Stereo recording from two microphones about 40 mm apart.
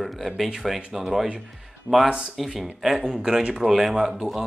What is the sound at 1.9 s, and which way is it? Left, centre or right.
Speech, right.